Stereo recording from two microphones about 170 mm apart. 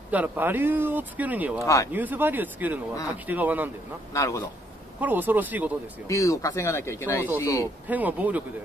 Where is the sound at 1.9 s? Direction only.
10° right (ahead or behind).